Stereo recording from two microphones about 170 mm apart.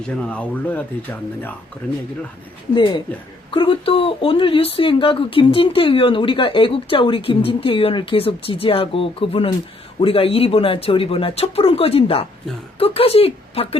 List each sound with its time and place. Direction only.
0.1 s speech: 5° left (ahead or behind)
2.7 s speech: 25° left (ahead or behind)